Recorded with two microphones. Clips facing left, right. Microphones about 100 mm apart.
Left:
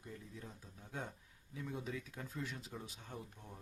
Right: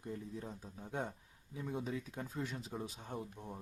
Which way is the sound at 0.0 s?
35° right (ahead or behind).